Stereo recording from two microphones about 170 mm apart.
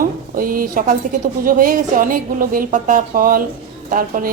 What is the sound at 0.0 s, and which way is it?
A woman's voice, 55° right (ahead or behind).